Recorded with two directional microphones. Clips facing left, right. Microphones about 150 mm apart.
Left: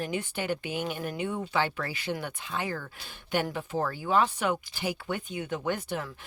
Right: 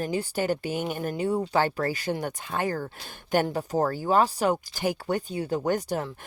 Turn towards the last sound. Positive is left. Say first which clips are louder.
# right 5 dB
turn(degrees=-40)  # may be behind; listen again after turning